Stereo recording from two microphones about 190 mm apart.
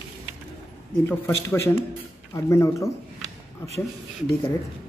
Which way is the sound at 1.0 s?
10° left (ahead or behind).